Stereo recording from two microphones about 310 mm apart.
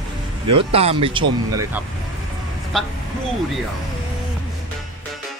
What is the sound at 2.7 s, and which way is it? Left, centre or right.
Speech, centre.